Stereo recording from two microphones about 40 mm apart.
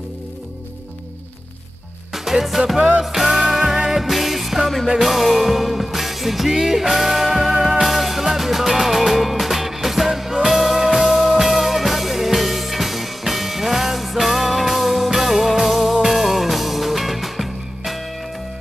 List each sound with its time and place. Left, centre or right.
2.1 s music: centre